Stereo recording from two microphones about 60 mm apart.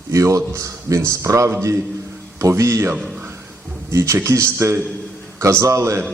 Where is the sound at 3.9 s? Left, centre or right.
Right.